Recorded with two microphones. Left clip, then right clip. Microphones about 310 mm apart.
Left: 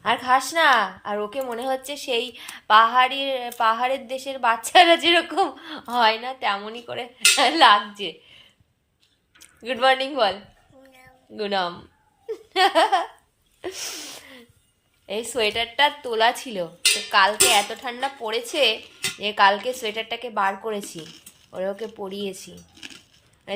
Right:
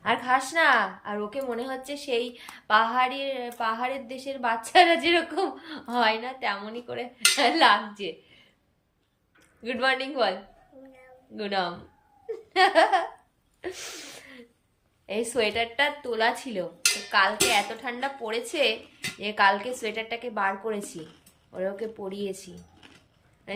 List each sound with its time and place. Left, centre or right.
0.0 s speech: centre
9.6 s speech: centre
11.3 s speech: centre
12.3 s laughter: centre
13.6 s speech: centre